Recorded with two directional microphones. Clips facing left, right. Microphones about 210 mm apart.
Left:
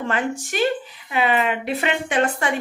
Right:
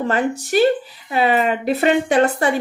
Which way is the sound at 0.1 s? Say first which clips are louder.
Right 6 dB; 35° right (ahead or behind).